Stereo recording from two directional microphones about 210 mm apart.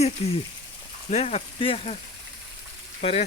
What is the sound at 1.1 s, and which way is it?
Speech, 30° left (ahead or behind).